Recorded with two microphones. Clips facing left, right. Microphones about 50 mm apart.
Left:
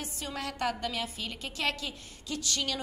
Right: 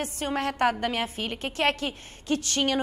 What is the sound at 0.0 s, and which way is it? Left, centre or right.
A woman's voice, right.